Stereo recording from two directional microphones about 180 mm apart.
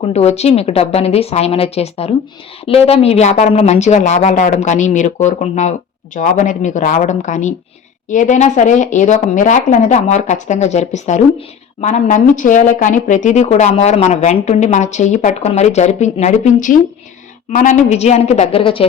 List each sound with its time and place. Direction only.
0.0 s speech: 35° left (ahead or behind)